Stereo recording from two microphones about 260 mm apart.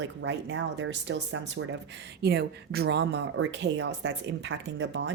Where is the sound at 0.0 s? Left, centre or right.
Right.